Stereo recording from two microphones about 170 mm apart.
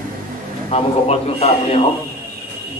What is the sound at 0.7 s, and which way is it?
A man's voice, 35° left (ahead or behind).